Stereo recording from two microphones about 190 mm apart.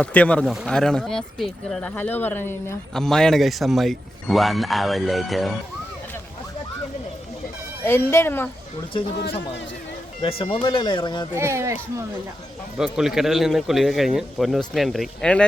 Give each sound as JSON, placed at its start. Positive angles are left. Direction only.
{"t": 0.0, "sound": "speech", "side_deg": 5}
{"t": 7.9, "sound": "speech", "side_deg": 10}
{"t": 10.2, "sound": "speech", "side_deg": 30}
{"t": 11.3, "sound": "speech", "side_deg": -15}
{"t": 12.7, "sound": "speech", "side_deg": -5}